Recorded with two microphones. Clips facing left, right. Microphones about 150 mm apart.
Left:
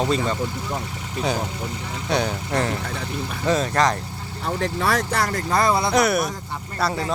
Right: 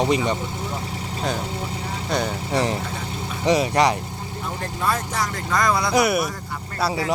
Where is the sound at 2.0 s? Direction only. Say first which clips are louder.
Left 2 dB; centre (ahead or behind).